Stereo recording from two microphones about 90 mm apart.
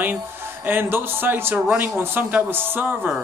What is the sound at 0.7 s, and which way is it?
A man's voice, 25° right (ahead or behind).